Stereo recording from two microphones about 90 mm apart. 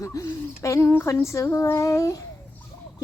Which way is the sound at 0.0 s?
35° left (ahead or behind).